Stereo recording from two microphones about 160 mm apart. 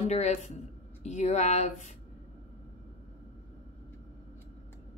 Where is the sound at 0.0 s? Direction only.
45° left (ahead or behind).